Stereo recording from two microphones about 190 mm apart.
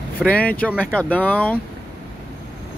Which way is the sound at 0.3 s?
5° left (ahead or behind).